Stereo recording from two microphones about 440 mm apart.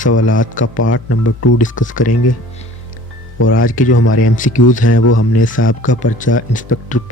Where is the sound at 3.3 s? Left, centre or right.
Left.